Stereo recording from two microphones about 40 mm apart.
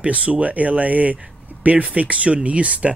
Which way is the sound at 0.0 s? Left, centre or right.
Right.